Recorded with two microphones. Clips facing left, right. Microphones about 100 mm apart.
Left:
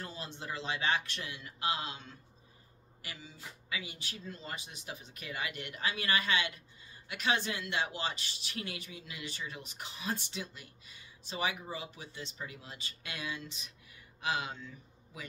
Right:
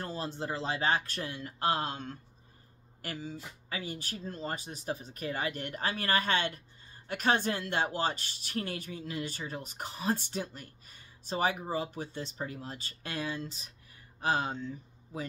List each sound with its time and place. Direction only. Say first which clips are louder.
0.0 s speech: right 7 dB; 40° right (ahead or behind)